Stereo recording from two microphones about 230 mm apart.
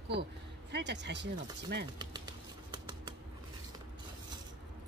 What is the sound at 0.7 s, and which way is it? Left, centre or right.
Speech, right.